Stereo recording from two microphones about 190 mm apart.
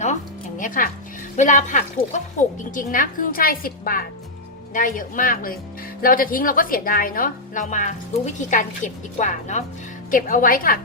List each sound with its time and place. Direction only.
0.0 s music: 40° left (ahead or behind)
1.4 s a woman's voice: 40° left (ahead or behind)